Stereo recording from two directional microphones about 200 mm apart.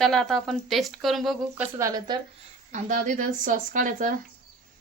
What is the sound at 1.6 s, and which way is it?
Speech, 15° right (ahead or behind).